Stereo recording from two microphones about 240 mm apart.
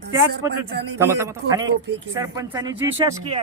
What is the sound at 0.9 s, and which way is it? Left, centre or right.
A man's voice, centre.